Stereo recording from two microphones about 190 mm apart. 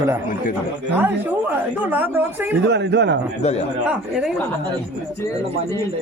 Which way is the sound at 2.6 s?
65° right (ahead or behind).